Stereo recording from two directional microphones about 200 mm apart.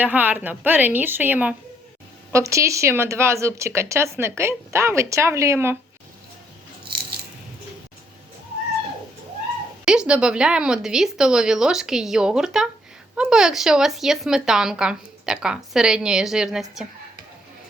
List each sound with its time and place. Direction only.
0.0 s speech: 10° right (ahead or behind)
9.8 s speech: 5° right (ahead or behind)